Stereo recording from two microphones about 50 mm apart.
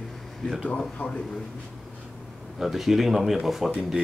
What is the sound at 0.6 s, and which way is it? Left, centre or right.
Speech, left.